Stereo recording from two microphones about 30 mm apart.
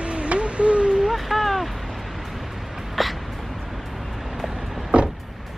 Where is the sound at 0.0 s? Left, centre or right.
Right.